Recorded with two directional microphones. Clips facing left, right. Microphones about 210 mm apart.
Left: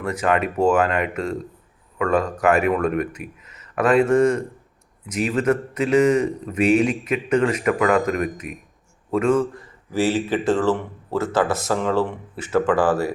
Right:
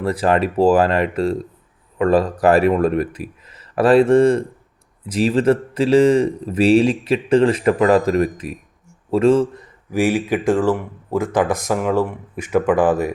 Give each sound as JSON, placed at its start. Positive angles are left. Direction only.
{"t": 0.0, "sound": "a man's voice", "side_deg": -35}
{"t": 9.9, "sound": "speech", "side_deg": -15}